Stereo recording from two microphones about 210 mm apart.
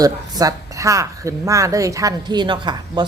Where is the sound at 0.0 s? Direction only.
15° right (ahead or behind).